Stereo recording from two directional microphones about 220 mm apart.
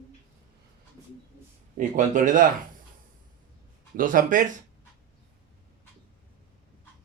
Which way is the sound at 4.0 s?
40° right (ahead or behind).